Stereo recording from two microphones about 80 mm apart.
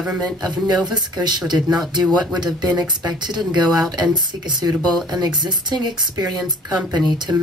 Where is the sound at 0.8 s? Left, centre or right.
Right.